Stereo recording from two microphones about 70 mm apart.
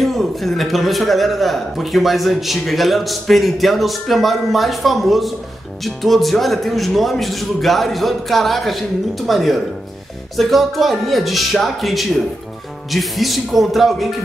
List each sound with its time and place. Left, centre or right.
0.0 s a man's voice: centre